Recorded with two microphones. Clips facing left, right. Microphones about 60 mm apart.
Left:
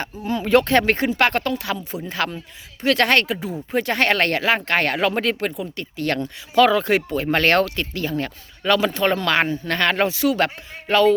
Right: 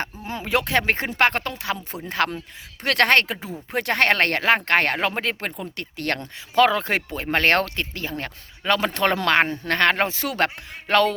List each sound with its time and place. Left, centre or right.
0.0 s speech: right
0.4 s speech: centre
0.9 s speech: right
2.0 s speech: right
3.7 s speech: right
5.4 s speech: right
5.7 s speech: right
7.1 s speech: right
8.9 s speech: right
9.2 s speech: right
10.8 s music: right